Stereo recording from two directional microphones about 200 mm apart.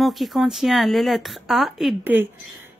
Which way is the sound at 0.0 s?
Centre (ahead or behind).